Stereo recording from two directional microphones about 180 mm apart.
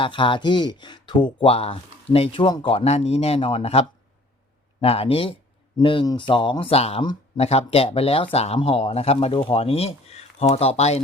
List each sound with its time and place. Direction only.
0.0 s speech: 25° left (ahead or behind)